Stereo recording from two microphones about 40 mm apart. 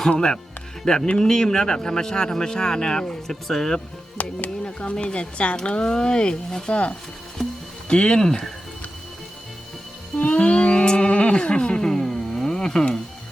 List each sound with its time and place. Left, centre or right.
0.1 s speech: left
4.2 s speech: left; by 6.7 s centre
6.7 s speech: left; by 8.5 s centre
10.2 s a sound: left; by 12.8 s centre